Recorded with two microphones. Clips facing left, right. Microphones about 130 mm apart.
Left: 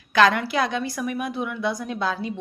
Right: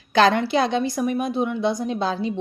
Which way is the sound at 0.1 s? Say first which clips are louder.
Right 2 dB; 30° right (ahead or behind).